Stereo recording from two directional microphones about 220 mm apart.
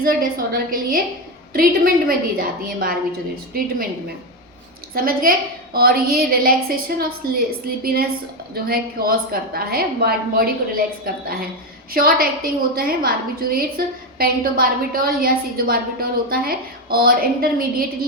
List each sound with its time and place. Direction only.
0.0 s a woman's voice: 40° right (ahead or behind)
4.9 s a woman's voice: 40° right (ahead or behind)